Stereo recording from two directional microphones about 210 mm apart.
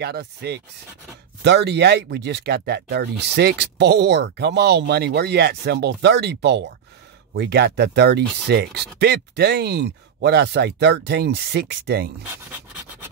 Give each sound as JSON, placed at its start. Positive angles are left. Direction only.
{"t": 0.0, "sound": "speech", "side_deg": -50}